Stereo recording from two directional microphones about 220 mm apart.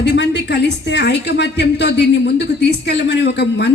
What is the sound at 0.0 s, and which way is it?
A woman's voice, 50° left (ahead or behind).